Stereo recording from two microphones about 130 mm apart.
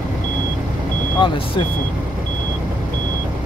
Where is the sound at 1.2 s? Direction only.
40° left (ahead or behind).